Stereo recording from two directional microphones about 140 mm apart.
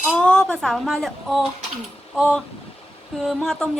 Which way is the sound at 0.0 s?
10° left (ahead or behind).